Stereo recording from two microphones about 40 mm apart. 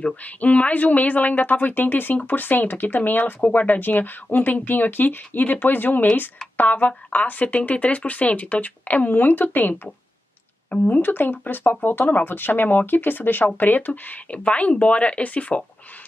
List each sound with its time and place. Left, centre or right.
0.1 s speech: left
11.0 s speech: left